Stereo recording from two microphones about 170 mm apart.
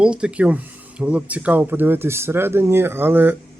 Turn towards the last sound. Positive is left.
turn(degrees=-10)  # may be behind; listen again after turning